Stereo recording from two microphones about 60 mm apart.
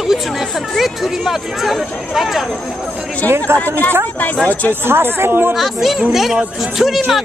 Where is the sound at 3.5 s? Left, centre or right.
Right.